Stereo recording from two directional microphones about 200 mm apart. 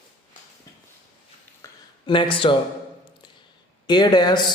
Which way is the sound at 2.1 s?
25° left (ahead or behind).